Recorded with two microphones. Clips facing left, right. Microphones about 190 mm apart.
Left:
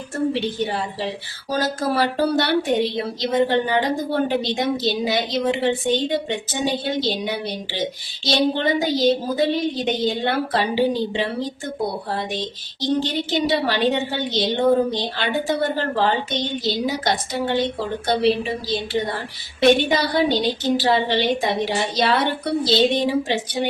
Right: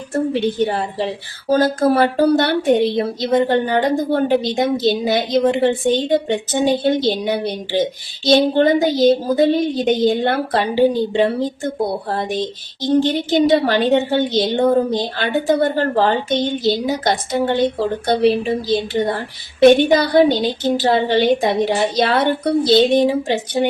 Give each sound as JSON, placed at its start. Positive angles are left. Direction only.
{"t": 0.3, "sound": "a woman's voice", "side_deg": -50}
{"t": 12.9, "sound": "a woman's voice", "side_deg": -50}